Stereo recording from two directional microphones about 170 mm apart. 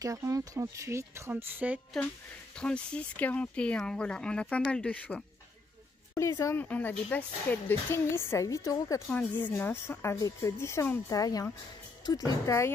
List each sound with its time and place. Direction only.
0.0 s speech: 20° right (ahead or behind)
2.5 s speech: 5° left (ahead or behind)